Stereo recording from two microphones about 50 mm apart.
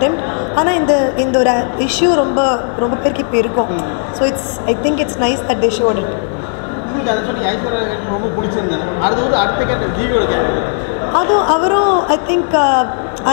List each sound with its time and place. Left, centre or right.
0.6 s a woman's voice: centre
7.1 s a woman's voice: centre